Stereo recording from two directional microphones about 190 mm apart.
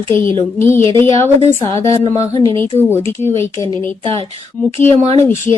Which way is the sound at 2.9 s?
15° left (ahead or behind).